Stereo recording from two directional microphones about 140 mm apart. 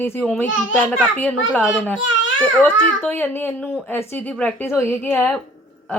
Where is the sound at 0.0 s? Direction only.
15° left (ahead or behind).